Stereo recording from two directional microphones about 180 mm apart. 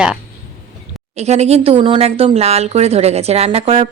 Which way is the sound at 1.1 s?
35° right (ahead or behind).